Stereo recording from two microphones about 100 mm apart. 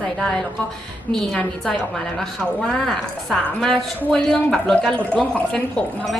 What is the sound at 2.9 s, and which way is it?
A woman's voice, 5° left (ahead or behind).